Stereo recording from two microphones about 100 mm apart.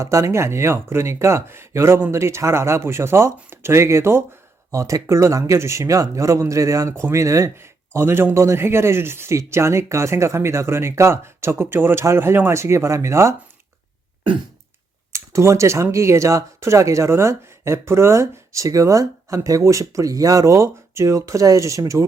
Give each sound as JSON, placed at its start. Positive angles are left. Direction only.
{"t": 0.0, "sound": "speech", "side_deg": -30}
{"t": 15.1, "sound": "speech", "side_deg": -30}